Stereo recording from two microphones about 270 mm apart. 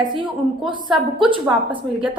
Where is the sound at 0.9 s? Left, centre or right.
Centre.